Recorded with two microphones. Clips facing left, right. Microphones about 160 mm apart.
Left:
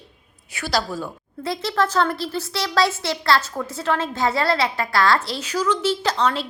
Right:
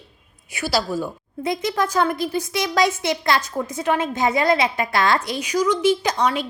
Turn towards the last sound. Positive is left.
turn(degrees=-15)  # may be behind; listen again after turning